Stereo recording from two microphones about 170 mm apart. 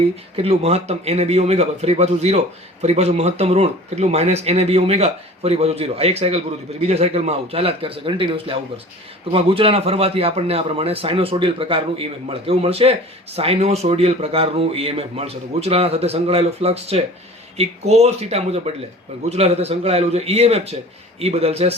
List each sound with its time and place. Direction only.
0.3 s a man's voice: 35° right (ahead or behind)